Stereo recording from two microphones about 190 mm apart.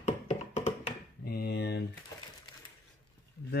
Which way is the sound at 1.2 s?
55° left (ahead or behind).